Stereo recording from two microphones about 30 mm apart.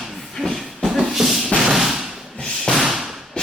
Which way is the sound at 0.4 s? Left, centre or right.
Centre.